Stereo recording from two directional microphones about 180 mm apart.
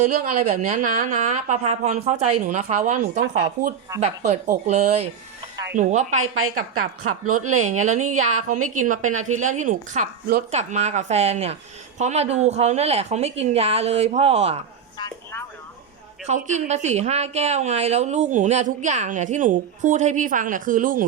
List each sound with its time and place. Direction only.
0.0 s a woman's voice: 45° right (ahead or behind)
7.6 s a woman's voice: 40° right (ahead or behind)
10.5 s a woman's voice: 40° right (ahead or behind)
16.2 s a woman's voice: 40° right (ahead or behind)